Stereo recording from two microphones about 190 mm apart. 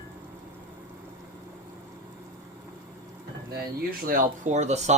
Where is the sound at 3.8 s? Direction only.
50° right (ahead or behind).